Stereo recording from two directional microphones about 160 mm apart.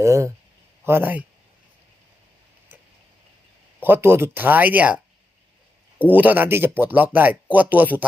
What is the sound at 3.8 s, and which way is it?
Speech, 15° right (ahead or behind).